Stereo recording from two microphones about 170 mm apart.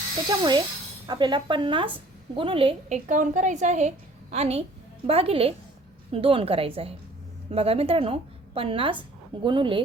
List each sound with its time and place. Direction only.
0.3 s a woman's voice: 25° right (ahead or behind)
3.1 s a woman's voice: 45° right (ahead or behind); by 9.8 s 30° right (ahead or behind)